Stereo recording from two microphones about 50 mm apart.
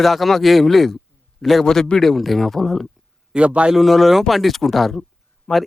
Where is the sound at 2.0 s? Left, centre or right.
Centre.